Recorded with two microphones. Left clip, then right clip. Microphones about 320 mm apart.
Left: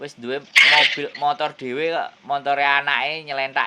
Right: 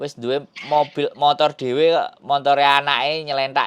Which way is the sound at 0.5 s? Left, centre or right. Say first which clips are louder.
Left 9 dB; left.